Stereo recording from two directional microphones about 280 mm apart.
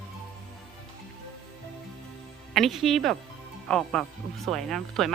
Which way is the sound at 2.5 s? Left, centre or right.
Centre.